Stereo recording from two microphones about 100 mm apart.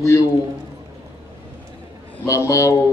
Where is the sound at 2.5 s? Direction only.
30° left (ahead or behind).